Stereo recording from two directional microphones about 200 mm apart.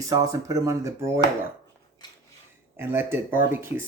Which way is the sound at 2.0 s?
20° left (ahead or behind).